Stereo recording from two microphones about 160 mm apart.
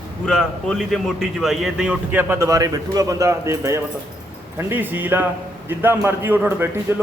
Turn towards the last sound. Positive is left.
turn(degrees=-15)  # may be behind; listen again after turning